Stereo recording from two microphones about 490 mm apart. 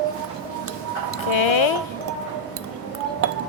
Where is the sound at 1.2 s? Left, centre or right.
Left.